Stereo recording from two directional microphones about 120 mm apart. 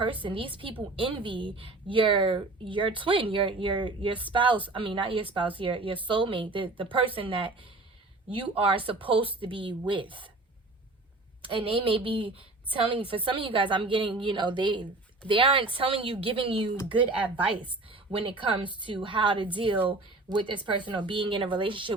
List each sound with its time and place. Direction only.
0.0 s a woman's voice: 45° right (ahead or behind)
8.5 s a woman's voice: 50° right (ahead or behind)
11.4 s a woman's voice: 50° right (ahead or behind)
17.2 s speech: 10° right (ahead or behind)
17.8 s a woman's voice: 50° right (ahead or behind)